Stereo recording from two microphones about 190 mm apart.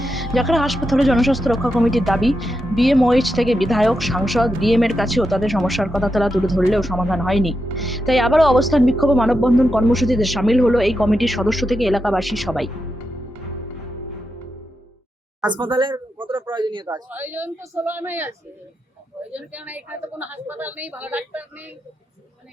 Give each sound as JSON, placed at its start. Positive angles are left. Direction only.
{"t": 0.0, "sound": "speech", "side_deg": 0}
{"t": 15.5, "sound": "speech", "side_deg": -25}
{"t": 17.1, "sound": "a woman's voice", "side_deg": -10}